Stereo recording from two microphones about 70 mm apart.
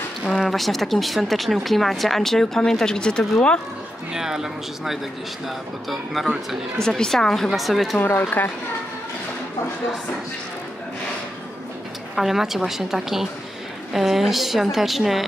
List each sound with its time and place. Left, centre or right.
0.3 s speech: centre
4.1 s speech: centre
8.0 s speech: left
12.2 s speech: centre